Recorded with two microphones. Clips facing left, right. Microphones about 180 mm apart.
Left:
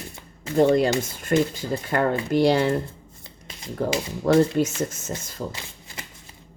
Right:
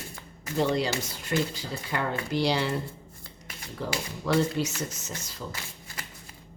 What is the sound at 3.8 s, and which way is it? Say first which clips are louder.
Speech: left 8 dB; 50° left (ahead or behind).